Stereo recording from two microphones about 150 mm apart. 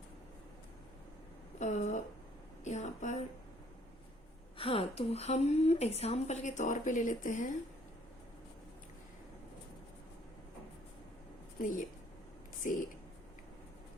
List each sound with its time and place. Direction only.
1.5 s a woman's voice: 50° left (ahead or behind)
4.5 s a woman's voice: 35° left (ahead or behind); by 7.5 s 60° left (ahead or behind)
11.6 s a woman's voice: 60° left (ahead or behind)